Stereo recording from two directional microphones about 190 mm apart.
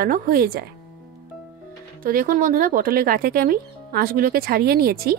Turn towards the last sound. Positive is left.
turn(degrees=-55)  # may be behind; listen again after turning